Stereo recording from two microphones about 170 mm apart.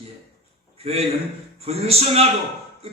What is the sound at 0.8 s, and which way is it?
A man's voice, 35° right (ahead or behind).